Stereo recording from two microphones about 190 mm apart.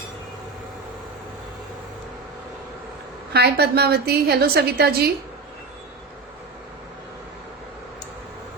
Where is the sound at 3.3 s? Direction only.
60° right (ahead or behind).